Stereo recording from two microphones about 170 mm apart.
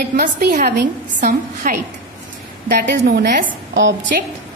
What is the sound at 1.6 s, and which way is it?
Speech, 55° right (ahead or behind).